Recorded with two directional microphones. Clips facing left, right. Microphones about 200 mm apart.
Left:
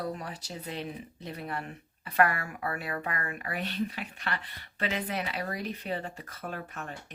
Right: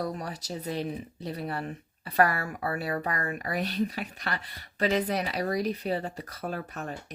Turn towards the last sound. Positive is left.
turn(degrees=-40)  # may be behind; listen again after turning